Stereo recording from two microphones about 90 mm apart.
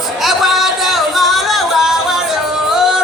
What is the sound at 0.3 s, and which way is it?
Music, centre (ahead or behind).